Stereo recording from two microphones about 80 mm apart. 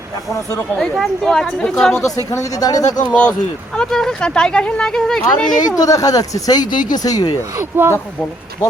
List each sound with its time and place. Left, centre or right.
0.8 s speech: centre
2.1 s speech: left
3.1 s speech: centre
5.6 s speech: left
7.0 s speech: left
7.7 s speech: right